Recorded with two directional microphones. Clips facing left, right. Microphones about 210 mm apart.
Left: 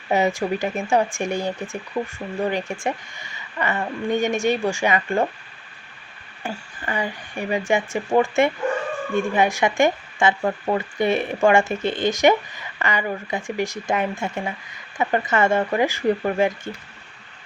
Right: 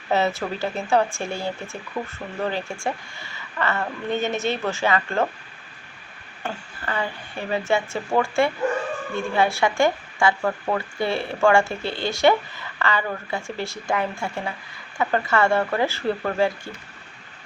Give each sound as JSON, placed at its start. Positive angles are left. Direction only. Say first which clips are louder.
{"t": 0.1, "sound": "speech", "louder": "left 2 dB", "side_deg": 15}
{"t": 6.4, "sound": "speech", "louder": "left 1 dB", "side_deg": 15}